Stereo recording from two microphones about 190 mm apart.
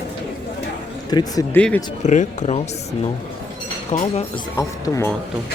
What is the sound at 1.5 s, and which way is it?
Speech, 10° left (ahead or behind).